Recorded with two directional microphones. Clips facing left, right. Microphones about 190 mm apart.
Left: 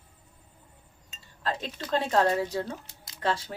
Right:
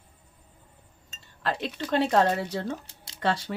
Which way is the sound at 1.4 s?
70° right (ahead or behind).